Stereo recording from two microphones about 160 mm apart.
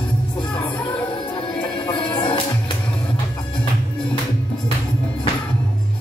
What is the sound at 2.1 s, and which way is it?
Music, 30° left (ahead or behind).